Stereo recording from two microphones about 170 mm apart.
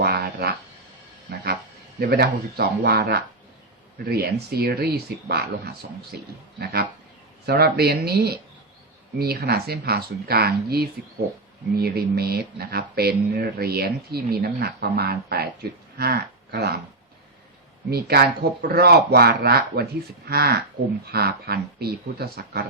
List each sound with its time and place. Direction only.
0.0 s a sound: 75° right (ahead or behind)
2.0 s speech: 70° right (ahead or behind)
17.9 s speech: 65° right (ahead or behind)